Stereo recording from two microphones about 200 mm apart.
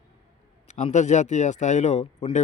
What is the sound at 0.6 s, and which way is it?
Speech, 35° left (ahead or behind).